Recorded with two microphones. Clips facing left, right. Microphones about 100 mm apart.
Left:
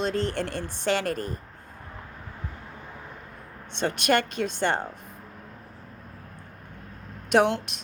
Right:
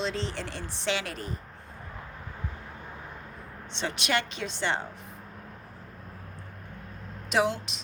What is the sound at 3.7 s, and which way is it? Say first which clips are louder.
Speech: left 6 dB; 50° left (ahead or behind).